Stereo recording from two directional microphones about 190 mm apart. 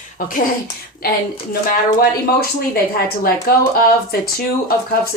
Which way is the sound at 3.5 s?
50° left (ahead or behind).